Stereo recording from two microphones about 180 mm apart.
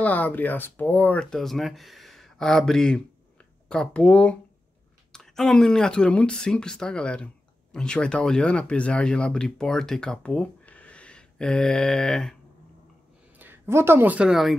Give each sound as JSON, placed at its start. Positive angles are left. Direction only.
{"t": 0.0, "sound": "speech", "side_deg": 10}
{"t": 13.4, "sound": "speech", "side_deg": -10}